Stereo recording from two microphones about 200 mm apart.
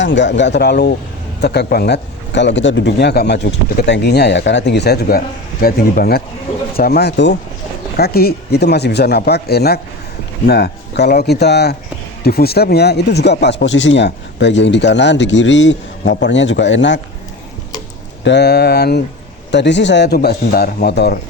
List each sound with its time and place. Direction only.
0.0 s speech: 60° left (ahead or behind)
18.2 s speech: 60° left (ahead or behind)